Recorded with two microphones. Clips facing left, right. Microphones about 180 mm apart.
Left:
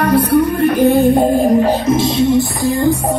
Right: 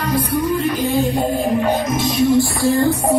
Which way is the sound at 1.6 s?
35° left (ahead or behind).